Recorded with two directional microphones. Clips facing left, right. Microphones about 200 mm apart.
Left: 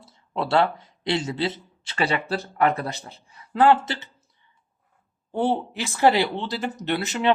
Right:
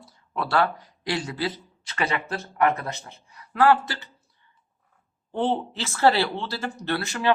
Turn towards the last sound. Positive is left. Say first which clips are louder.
# left 2 dB
turn(degrees=20)  # may be behind; listen again after turning